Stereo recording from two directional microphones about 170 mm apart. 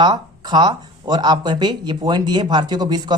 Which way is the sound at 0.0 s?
25° right (ahead or behind).